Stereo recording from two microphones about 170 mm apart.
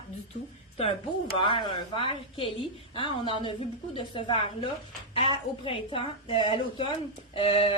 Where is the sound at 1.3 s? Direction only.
30° left (ahead or behind).